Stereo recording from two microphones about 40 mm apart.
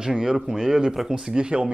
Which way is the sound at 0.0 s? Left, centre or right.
Centre.